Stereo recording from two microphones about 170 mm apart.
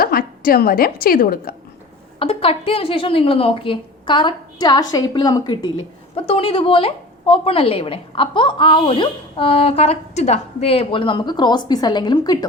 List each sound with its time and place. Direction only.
0.0 s a woman's voice: 60° left (ahead or behind)
2.1 s a woman's voice: 35° left (ahead or behind)